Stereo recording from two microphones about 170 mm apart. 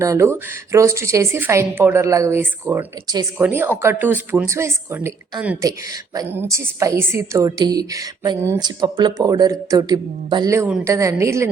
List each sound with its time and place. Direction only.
0.0 s a woman's voice: 15° right (ahead or behind)